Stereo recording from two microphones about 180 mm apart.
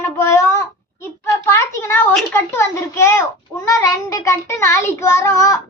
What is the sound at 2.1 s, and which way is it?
A child's voice, 10° left (ahead or behind).